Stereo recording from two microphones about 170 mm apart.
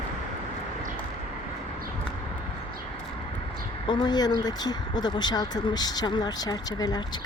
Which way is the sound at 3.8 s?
25° left (ahead or behind).